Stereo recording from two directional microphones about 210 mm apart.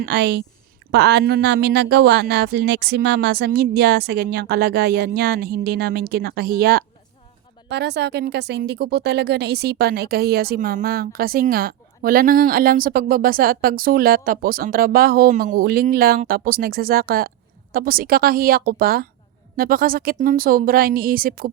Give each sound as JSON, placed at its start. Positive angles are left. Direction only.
{"t": 0.0, "sound": "a woman's voice", "side_deg": -55}